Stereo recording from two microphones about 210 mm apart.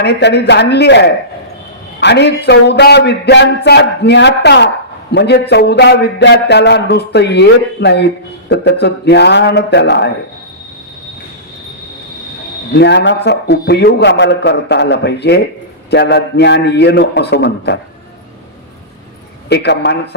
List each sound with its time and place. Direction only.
0.0 s a man's voice: 55° left (ahead or behind)
12.7 s a man's voice: 55° left (ahead or behind)
19.5 s a man's voice: 55° left (ahead or behind)